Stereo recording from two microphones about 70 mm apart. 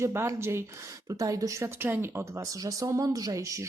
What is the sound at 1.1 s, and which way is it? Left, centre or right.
Speech, right.